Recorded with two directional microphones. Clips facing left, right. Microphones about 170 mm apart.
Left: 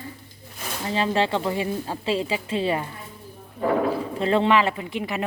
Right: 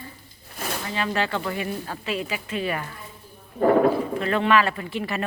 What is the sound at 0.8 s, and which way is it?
A woman's voice, 30° left (ahead or behind).